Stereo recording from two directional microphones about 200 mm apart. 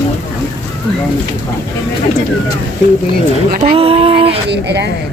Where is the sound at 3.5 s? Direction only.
30° right (ahead or behind).